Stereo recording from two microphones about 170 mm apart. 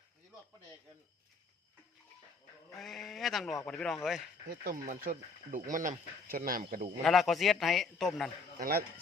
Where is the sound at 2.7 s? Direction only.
Centre (ahead or behind).